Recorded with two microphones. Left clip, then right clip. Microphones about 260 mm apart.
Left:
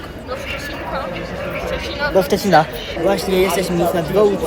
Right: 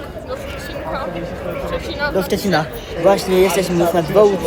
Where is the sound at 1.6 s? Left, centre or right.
Centre.